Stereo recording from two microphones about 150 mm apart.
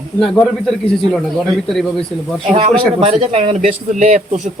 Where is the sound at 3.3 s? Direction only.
50° right (ahead or behind).